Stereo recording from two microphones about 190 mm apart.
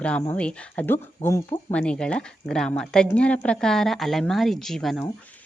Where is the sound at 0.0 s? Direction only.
10° left (ahead or behind).